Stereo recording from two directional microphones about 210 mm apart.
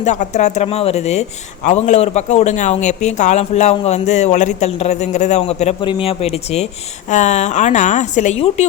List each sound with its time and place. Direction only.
0.0 s speech: 35° left (ahead or behind)